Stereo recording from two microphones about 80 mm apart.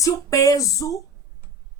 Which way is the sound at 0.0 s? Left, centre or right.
Left.